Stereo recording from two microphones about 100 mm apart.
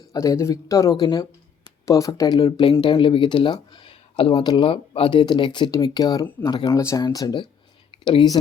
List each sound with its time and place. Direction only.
0.1 s speech: 30° left (ahead or behind)
0.9 s speech: 50° left (ahead or behind)
1.9 s speech: 35° left (ahead or behind)
2.8 s speech: 55° left (ahead or behind)
4.7 s speech: 65° left (ahead or behind)
5.2 s speech: 50° left (ahead or behind)
6.7 s speech: 35° left (ahead or behind)